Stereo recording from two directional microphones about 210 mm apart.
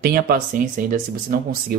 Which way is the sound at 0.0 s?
45° right (ahead or behind).